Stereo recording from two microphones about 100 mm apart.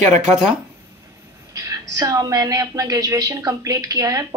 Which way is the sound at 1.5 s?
35° right (ahead or behind).